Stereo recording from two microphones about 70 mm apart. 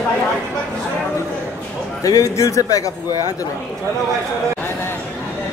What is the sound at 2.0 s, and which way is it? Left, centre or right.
A man's voice, left.